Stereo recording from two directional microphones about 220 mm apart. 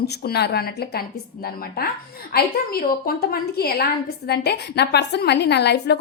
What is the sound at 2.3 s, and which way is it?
A woman's voice, 40° left (ahead or behind).